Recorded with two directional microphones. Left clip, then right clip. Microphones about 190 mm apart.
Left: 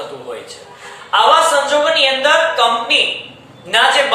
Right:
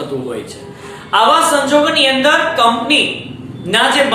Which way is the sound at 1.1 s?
20° right (ahead or behind).